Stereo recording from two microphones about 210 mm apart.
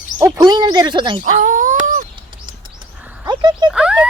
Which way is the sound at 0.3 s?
20° right (ahead or behind).